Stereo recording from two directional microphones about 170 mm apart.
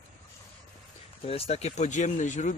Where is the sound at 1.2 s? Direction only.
35° left (ahead or behind).